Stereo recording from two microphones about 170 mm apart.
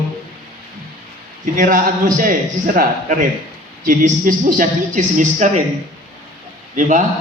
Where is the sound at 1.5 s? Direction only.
50° right (ahead or behind).